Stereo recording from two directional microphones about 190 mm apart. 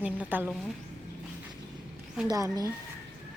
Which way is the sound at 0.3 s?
10° right (ahead or behind).